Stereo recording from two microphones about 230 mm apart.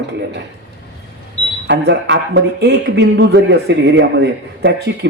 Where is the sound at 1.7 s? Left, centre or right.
Right.